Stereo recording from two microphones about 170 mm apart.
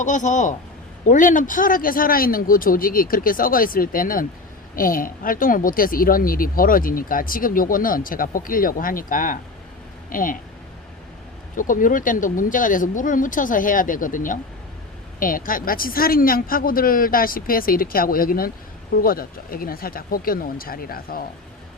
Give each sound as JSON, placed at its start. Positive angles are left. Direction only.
{"t": 0.0, "sound": "speech", "side_deg": 45}
{"t": 11.5, "sound": "speech", "side_deg": 50}